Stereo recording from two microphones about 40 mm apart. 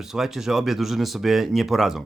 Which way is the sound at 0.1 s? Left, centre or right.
Centre.